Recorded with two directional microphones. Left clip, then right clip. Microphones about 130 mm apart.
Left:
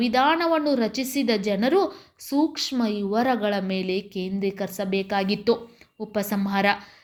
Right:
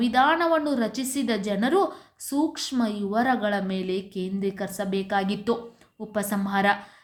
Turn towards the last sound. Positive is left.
turn(degrees=25)  # may be behind; listen again after turning